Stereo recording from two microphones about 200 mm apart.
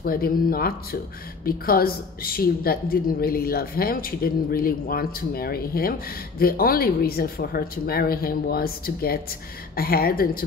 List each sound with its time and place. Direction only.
0.0 s a woman's voice: 50° left (ahead or behind)